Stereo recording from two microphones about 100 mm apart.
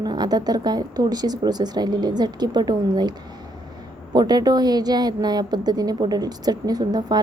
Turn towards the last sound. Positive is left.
turn(degrees=-40)  # may be behind; listen again after turning